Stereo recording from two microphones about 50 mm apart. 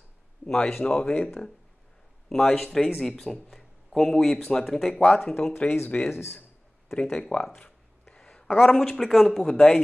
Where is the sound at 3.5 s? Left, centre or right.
Centre.